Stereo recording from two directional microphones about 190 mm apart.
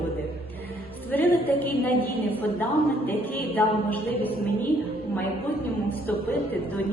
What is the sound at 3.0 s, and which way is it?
A woman's voice, 10° left (ahead or behind).